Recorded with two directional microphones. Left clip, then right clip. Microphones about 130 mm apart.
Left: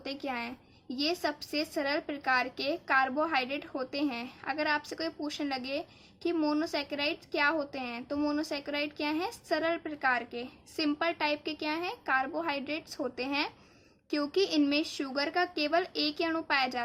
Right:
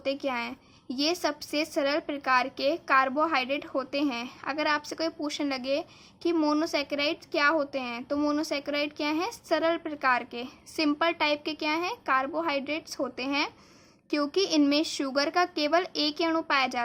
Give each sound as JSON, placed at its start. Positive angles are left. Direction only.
{"t": 0.0, "sound": "a woman's voice", "side_deg": -35}